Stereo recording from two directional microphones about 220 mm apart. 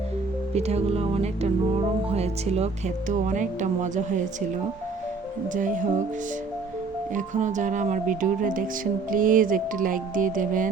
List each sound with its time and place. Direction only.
0.5 s music: 30° right (ahead or behind)
2.0 s speech: 30° right (ahead or behind)
5.5 s speech: 35° right (ahead or behind)
7.1 s speech: 35° right (ahead or behind)